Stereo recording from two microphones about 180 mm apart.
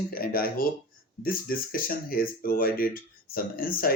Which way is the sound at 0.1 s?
55° left (ahead or behind).